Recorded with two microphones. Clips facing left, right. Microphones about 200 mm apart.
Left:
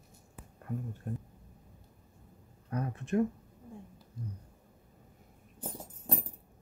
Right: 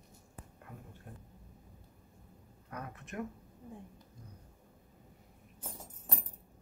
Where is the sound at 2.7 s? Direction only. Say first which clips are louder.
Left 11 dB; 30° left (ahead or behind).